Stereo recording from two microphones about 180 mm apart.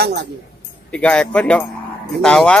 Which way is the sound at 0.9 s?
5° left (ahead or behind).